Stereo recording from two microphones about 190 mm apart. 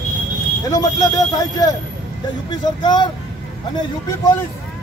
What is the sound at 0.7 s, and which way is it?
A man's voice, 20° left (ahead or behind).